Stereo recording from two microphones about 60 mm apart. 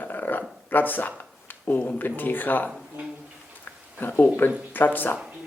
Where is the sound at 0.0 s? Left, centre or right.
Left.